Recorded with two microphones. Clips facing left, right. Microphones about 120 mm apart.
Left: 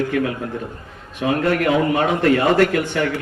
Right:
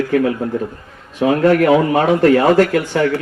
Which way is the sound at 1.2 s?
40° right (ahead or behind).